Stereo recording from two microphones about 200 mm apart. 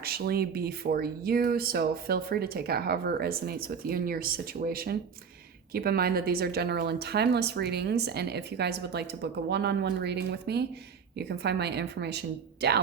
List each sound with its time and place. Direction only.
0.0 s speech: 50° right (ahead or behind)